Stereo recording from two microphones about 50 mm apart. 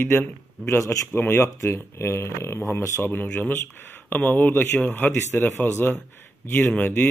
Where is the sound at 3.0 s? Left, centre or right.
Left.